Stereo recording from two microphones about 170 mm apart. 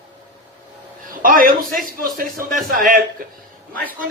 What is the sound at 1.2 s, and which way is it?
A man's voice, 55° right (ahead or behind).